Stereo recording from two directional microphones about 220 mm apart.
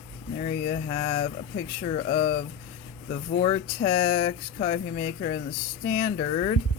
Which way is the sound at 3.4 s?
25° left (ahead or behind).